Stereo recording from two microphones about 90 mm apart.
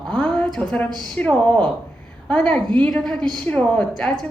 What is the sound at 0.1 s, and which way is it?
A woman's voice, 5° left (ahead or behind).